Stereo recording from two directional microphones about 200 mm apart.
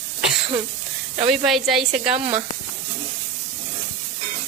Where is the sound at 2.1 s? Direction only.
25° right (ahead or behind).